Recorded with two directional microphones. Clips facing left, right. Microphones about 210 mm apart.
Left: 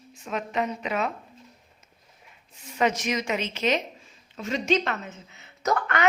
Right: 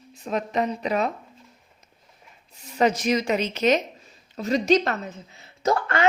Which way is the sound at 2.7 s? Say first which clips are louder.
Right 4 dB; 35° right (ahead or behind).